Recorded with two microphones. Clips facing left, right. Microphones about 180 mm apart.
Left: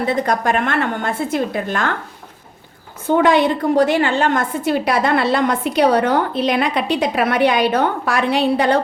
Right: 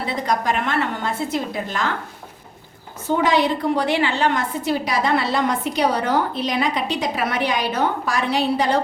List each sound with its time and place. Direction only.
0.0 s a woman's voice: 50° left (ahead or behind)
3.2 s a woman's voice: 55° left (ahead or behind)